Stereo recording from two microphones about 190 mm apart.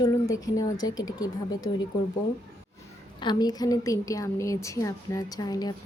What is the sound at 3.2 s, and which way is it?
A woman's voice, 20° left (ahead or behind).